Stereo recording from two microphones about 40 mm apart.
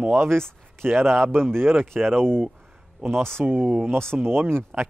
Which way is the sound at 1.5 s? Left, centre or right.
Right.